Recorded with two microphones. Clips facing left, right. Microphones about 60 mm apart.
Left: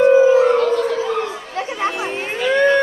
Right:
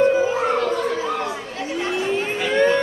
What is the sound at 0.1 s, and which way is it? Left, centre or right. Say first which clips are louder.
Music: left 8 dB; left.